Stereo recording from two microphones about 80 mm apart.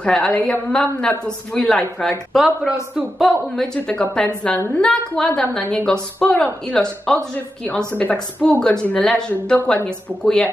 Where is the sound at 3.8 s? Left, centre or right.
Centre.